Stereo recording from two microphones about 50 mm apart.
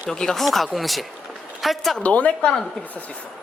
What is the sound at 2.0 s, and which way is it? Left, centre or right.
Speech, left.